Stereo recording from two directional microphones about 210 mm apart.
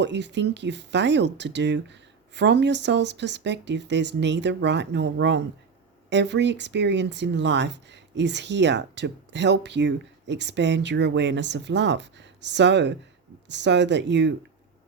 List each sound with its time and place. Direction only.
0.0 s speech: 55° right (ahead or behind)